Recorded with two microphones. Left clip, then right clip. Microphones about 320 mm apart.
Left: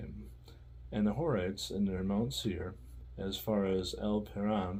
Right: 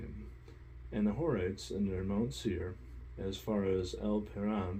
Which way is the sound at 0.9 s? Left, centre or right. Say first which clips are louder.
Left 1 dB; left.